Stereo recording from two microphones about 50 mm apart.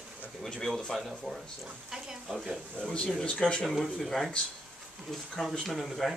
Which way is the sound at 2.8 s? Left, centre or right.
Left.